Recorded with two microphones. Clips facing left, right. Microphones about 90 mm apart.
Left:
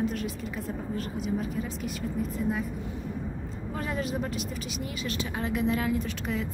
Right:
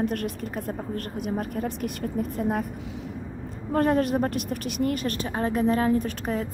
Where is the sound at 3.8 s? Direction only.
55° right (ahead or behind).